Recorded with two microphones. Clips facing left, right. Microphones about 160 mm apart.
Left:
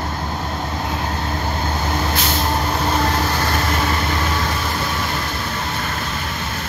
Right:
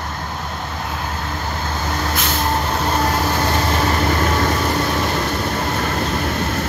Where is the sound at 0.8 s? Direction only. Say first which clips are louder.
Left 2 dB; 20° left (ahead or behind).